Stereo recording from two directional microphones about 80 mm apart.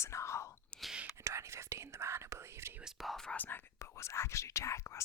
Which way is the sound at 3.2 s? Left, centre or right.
Left.